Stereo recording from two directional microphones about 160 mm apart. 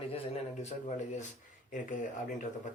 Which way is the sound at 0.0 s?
40° left (ahead or behind).